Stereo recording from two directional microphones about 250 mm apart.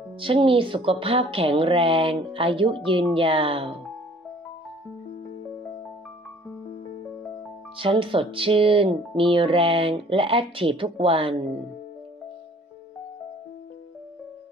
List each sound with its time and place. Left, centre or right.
0.2 s speech: right
7.7 s speech: right